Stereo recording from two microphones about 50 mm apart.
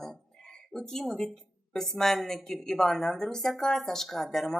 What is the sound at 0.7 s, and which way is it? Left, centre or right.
A woman's voice, centre.